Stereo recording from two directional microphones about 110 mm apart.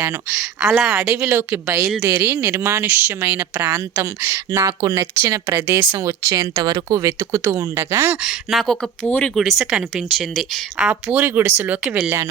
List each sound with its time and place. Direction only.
0.6 s a woman's voice: 5° right (ahead or behind)
1.1 s speech: 20° right (ahead or behind)
4.6 s speech: 35° right (ahead or behind)
5.5 s speech: 20° right (ahead or behind)
6.1 s speech: 30° right (ahead or behind)
8.2 s a woman's voice: 5° right (ahead or behind)
9.0 s speech: 15° left (ahead or behind)
9.3 s a woman's voice: centre (ahead or behind)
11.2 s speech: 20° right (ahead or behind)
11.9 s speech: 10° right (ahead or behind)